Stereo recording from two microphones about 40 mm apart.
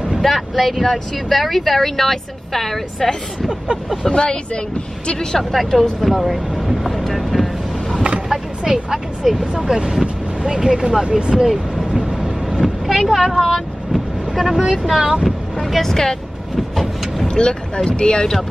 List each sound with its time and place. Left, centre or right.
0.2 s speech: centre
4.1 s speech: left
5.4 s speech: centre
8.3 s speech: centre
11.3 s speech: centre
11.9 s train: right
12.2 s train: centre
13.1 s vehicle: centre
14.8 s speech: centre
15.2 s vehicle: centre
15.9 s speech: centre
16.7 s vehicle: centre
17.3 s speech: centre